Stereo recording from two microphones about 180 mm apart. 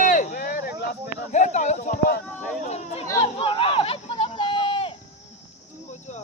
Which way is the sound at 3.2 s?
30° left (ahead or behind).